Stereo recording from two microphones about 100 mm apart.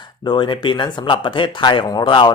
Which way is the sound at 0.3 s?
50° left (ahead or behind).